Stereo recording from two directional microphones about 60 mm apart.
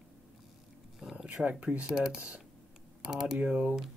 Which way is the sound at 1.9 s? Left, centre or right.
Centre.